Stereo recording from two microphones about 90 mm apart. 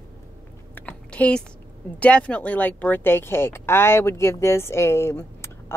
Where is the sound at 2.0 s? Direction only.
15° left (ahead or behind).